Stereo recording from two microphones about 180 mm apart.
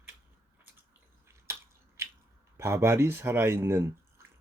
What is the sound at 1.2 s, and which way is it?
Finger snapping, 15° right (ahead or behind).